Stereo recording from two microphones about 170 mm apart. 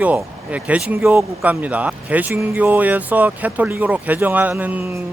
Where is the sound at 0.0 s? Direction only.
10° right (ahead or behind).